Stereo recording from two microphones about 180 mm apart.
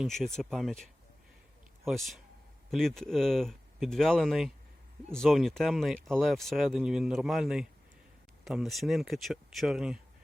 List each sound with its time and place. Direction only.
0.0 s speech: centre (ahead or behind)